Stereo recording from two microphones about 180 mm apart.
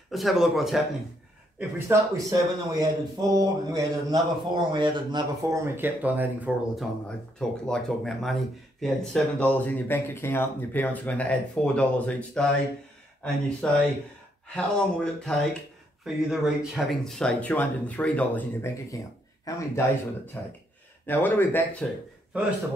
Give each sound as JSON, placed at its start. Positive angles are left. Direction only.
{"t": 0.1, "sound": "speech", "side_deg": 0}
{"t": 1.6, "sound": "a man's voice", "side_deg": -15}
{"t": 5.8, "sound": "speech", "side_deg": -10}